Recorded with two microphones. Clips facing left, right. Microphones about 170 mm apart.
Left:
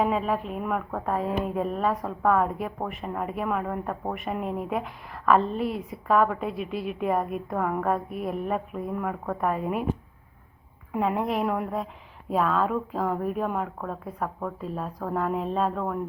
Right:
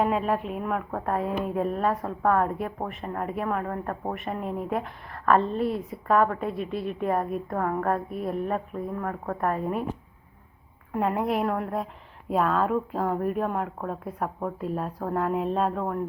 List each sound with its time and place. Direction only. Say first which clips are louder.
0.0 s speech: even; centre (ahead or behind)
10.9 s speech: even; centre (ahead or behind)